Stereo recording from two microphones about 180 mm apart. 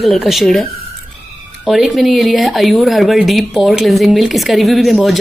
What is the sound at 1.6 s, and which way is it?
Speech, centre (ahead or behind).